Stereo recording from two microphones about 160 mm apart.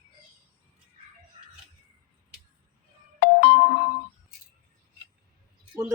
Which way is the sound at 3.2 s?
75° left (ahead or behind).